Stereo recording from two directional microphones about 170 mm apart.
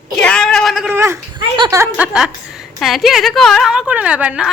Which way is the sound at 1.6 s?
15° right (ahead or behind).